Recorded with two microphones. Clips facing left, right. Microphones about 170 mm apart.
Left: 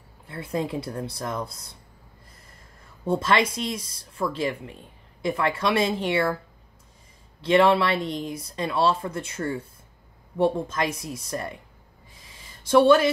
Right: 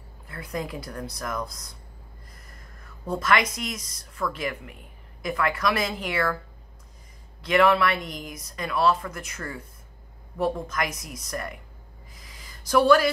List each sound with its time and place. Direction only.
0.3 s speech: 25° left (ahead or behind)
7.4 s speech: 30° left (ahead or behind)
12.1 s a sound: 25° left (ahead or behind)